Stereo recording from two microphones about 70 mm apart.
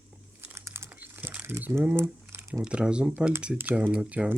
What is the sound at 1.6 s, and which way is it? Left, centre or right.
Speech, right.